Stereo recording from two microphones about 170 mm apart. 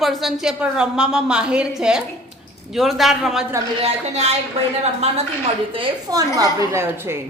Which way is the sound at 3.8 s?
40° right (ahead or behind).